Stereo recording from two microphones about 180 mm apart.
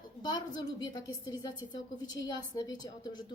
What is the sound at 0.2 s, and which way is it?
A woman's voice, 25° left (ahead or behind).